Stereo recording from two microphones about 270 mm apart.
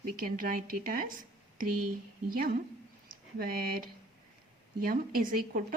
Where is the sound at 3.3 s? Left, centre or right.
Right.